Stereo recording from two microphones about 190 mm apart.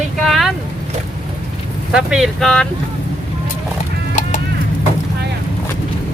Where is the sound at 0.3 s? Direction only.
Centre (ahead or behind).